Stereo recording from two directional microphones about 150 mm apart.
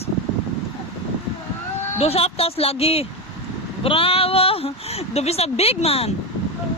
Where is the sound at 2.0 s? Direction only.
45° left (ahead or behind).